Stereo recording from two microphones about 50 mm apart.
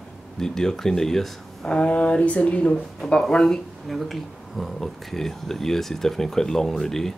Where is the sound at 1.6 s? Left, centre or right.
Left.